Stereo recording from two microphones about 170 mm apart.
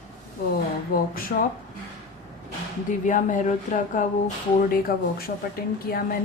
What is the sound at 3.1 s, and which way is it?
Speech, 45° left (ahead or behind).